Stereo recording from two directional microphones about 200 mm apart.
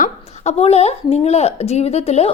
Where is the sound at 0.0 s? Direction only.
30° left (ahead or behind).